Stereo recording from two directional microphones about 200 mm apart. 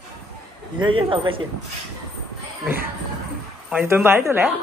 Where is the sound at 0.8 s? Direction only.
25° right (ahead or behind).